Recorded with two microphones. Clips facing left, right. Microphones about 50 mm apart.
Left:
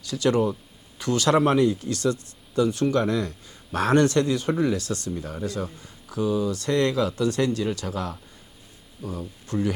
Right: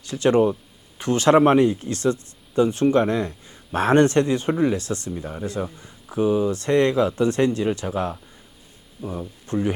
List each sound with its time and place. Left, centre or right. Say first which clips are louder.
0.0 s speech: right 4 dB; right